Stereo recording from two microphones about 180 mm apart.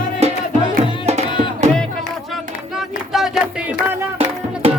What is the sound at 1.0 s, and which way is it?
Music, 40° right (ahead or behind).